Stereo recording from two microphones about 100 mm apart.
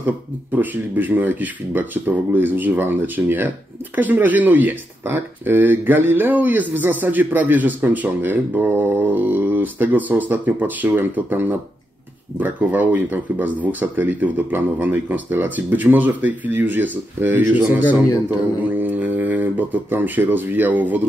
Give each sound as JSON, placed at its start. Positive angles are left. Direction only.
{"t": 0.0, "sound": "speech", "side_deg": -15}